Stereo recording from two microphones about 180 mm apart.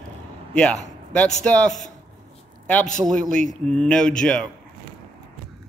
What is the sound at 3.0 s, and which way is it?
Speech, 5° left (ahead or behind).